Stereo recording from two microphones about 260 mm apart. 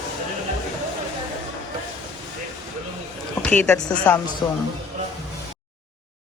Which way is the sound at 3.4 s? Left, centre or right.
Centre.